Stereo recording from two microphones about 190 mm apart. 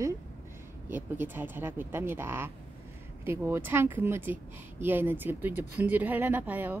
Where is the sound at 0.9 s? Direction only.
10° right (ahead or behind).